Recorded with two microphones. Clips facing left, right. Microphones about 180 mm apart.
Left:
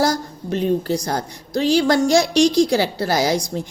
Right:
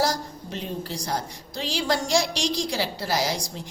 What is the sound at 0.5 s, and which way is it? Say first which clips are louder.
A woman's voice: left 13 dB; 50° left (ahead or behind).